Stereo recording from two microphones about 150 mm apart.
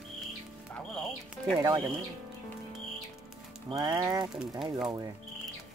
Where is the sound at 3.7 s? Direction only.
20° right (ahead or behind).